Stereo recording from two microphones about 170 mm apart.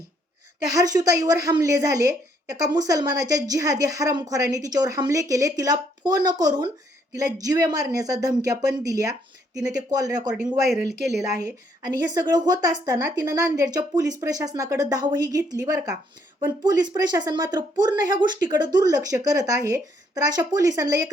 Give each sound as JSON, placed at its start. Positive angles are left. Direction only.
{"t": 0.7, "sound": "speech", "side_deg": -20}